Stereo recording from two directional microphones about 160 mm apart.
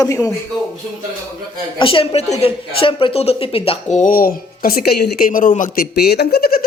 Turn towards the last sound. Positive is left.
turn(degrees=75)  # may be behind; listen again after turning